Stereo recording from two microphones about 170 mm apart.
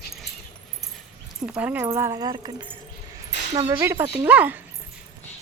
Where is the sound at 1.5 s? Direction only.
5° right (ahead or behind); by 2.7 s 25° right (ahead or behind).